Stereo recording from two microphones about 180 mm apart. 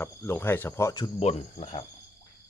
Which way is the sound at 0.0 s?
10° left (ahead or behind).